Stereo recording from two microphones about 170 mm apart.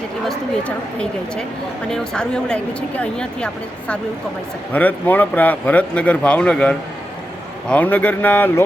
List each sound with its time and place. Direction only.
1.9 s speech: 5° left (ahead or behind)